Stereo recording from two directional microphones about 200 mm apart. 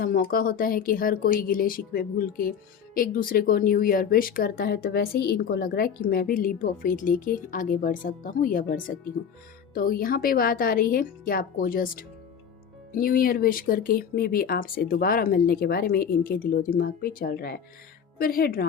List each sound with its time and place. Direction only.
0.0 s speech: 45° left (ahead or behind)